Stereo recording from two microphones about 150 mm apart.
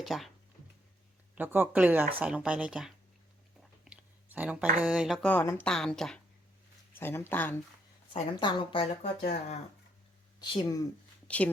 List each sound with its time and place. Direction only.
0.0 s speech: centre (ahead or behind)
1.4 s speech: 15° right (ahead or behind)
3.6 s chewing: 10° right (ahead or behind)
4.8 s speech: 5° right (ahead or behind)
5.2 s speech: 10° left (ahead or behind)
6.9 s speech: 15° left (ahead or behind)
8.1 s speech: 30° left (ahead or behind)
10.4 s speech: 25° left (ahead or behind)
11.3 s speech: 10° left (ahead or behind)